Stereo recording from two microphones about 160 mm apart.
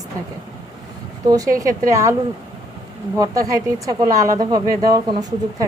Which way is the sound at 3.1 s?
20° right (ahead or behind).